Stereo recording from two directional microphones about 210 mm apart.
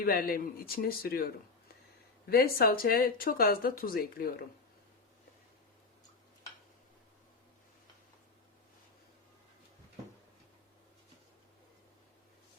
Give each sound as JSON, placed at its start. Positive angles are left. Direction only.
{"t": 0.0, "sound": "speech", "side_deg": 45}